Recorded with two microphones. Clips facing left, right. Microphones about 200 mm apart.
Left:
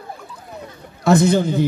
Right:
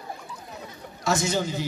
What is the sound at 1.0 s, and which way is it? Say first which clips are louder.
Speech: left 10 dB; 60° left (ahead or behind).